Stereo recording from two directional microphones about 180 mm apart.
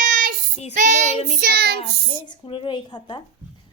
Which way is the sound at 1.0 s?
35° left (ahead or behind).